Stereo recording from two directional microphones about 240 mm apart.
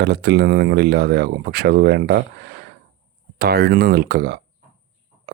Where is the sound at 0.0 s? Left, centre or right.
Right.